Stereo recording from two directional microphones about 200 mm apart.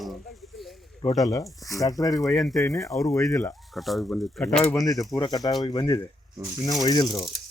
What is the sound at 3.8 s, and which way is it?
Speech, centre (ahead or behind).